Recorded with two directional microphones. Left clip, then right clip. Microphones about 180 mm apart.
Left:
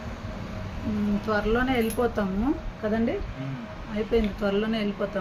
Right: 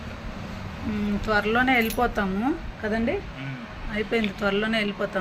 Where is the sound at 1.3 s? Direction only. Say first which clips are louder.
Right 4 dB; 10° right (ahead or behind).